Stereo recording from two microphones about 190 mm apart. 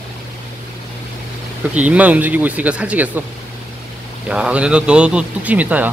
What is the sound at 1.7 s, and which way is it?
Speech, 5° right (ahead or behind).